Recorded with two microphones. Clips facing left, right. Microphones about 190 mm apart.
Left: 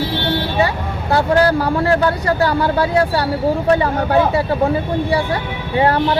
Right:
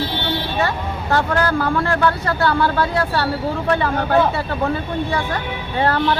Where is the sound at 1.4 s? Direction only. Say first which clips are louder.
Left 4 dB; 35° left (ahead or behind).